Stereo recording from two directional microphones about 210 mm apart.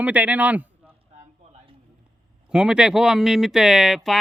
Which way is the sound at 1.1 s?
35° right (ahead or behind).